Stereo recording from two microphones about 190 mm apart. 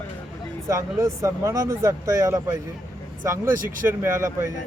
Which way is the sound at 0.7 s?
15° right (ahead or behind).